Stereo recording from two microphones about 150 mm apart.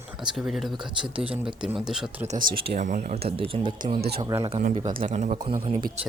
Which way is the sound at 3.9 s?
90° right.